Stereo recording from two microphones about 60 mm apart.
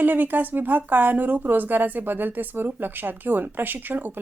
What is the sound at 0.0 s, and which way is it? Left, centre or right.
Speech, right.